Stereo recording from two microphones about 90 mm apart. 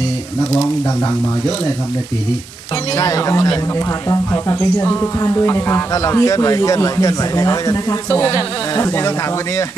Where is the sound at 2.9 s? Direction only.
40° left (ahead or behind).